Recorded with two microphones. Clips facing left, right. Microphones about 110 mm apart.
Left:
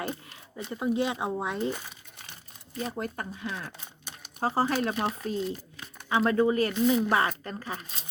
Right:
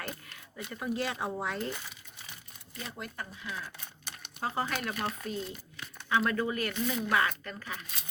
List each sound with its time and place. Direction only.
0.1 s speech: 25° left (ahead or behind)
2.7 s speech: 40° left (ahead or behind)
6.7 s speech: 15° left (ahead or behind)
7.1 s speech: 35° left (ahead or behind)